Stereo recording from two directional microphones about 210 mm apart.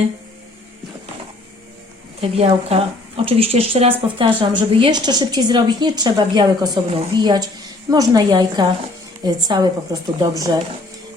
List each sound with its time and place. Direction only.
2.2 s speech: 30° right (ahead or behind)